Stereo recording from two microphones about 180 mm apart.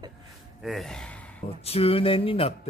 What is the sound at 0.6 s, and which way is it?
Speech, centre (ahead or behind).